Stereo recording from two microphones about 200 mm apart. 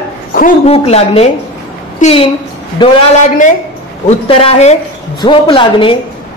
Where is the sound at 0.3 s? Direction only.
45° left (ahead or behind).